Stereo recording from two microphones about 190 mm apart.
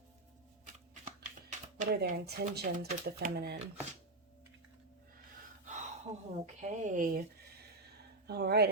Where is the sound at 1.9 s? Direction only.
55° right (ahead or behind).